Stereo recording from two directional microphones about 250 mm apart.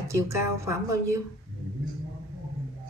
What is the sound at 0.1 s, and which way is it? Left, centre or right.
A woman's voice, centre.